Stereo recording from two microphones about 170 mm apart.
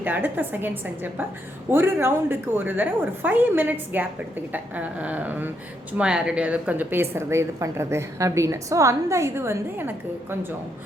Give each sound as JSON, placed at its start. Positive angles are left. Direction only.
{"t": 0.0, "sound": "a woman's voice", "side_deg": -10}
{"t": 1.7, "sound": "a woman's voice", "side_deg": -15}